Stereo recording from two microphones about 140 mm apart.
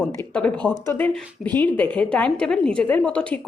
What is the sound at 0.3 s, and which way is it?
A woman's voice, 5° left (ahead or behind).